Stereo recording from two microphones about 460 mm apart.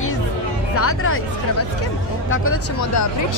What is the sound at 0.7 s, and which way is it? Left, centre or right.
Speech, left.